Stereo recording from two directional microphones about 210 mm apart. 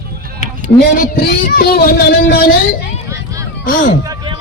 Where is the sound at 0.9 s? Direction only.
40° left (ahead or behind).